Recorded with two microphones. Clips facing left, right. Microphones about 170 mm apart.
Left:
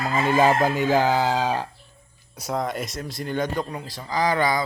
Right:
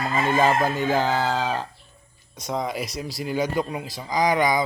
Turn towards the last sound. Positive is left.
turn(degrees=-15)  # may be behind; listen again after turning